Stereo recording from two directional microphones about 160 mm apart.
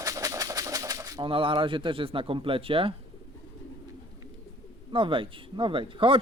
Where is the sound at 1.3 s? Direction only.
35° right (ahead or behind).